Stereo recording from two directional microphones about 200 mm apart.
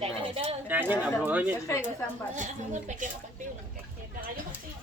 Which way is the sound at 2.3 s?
35° right (ahead or behind).